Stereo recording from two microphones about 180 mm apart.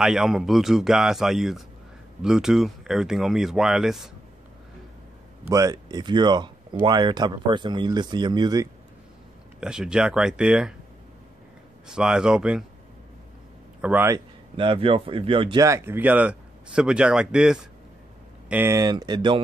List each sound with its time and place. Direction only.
0.0 s speech: 5° right (ahead or behind)
5.5 s speech: 20° right (ahead or behind)
9.6 s speech: 5° right (ahead or behind)
11.9 s speech: 5° right (ahead or behind)
13.7 s speech: 10° right (ahead or behind)
14.6 s speech: 30° right (ahead or behind)